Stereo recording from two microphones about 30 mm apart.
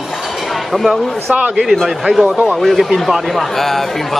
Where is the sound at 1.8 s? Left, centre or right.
Centre.